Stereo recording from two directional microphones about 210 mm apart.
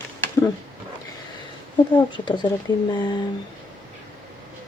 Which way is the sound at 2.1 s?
20° left (ahead or behind).